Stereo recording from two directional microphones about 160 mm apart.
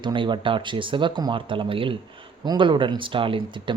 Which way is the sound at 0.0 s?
30° right (ahead or behind).